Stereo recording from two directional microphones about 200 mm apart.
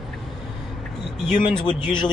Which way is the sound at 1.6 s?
20° left (ahead or behind).